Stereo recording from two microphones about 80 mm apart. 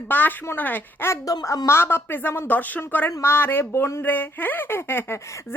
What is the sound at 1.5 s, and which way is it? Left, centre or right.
Speech, left.